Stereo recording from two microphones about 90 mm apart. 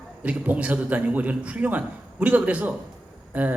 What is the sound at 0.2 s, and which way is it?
A man's voice, 15° right (ahead or behind).